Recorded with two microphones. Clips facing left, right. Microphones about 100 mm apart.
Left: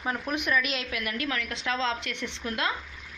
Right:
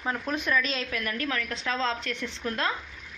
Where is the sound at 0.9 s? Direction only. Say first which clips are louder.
Right 1 dB; 40° right (ahead or behind).